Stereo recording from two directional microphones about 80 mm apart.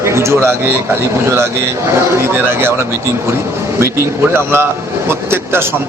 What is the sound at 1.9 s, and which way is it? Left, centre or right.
Speech, right.